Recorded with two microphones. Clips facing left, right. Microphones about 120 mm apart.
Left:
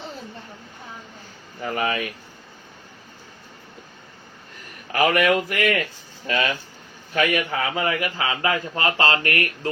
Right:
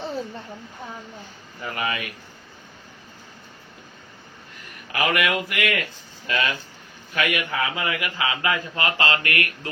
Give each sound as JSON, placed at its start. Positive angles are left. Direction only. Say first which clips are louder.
{"t": 1.6, "sound": "a man's voice", "louder": "left 4 dB", "side_deg": 40}
{"t": 4.9, "sound": "a man's voice", "louder": "left 4 dB", "side_deg": 40}